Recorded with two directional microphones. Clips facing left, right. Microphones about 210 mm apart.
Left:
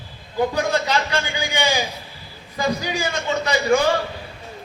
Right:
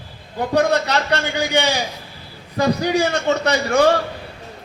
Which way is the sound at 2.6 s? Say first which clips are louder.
Right 6 dB; 65° right (ahead or behind).